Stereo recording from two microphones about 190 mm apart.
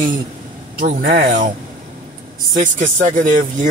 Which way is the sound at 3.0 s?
45° right (ahead or behind).